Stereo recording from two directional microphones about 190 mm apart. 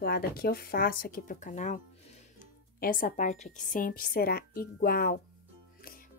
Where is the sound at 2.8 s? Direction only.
45° left (ahead or behind).